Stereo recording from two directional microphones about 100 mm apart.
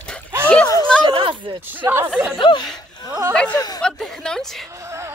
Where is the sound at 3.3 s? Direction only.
15° left (ahead or behind).